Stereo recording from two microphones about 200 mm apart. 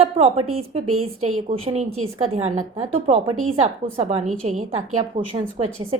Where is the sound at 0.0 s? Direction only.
30° right (ahead or behind).